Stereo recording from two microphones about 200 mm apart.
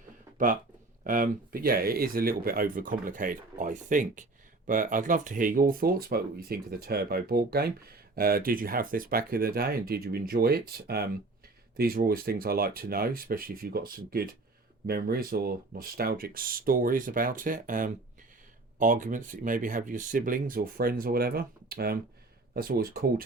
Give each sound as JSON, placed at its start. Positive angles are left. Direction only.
{"t": 1.0, "sound": "speech", "side_deg": -45}